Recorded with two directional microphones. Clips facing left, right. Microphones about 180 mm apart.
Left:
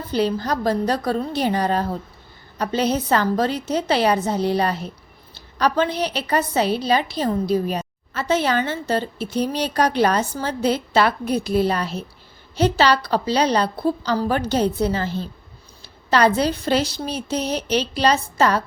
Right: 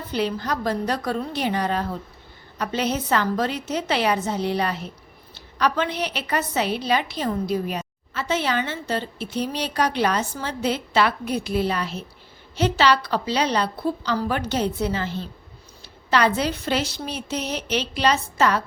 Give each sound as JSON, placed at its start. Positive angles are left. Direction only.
{"t": 0.1, "sound": "a woman's voice", "side_deg": 35}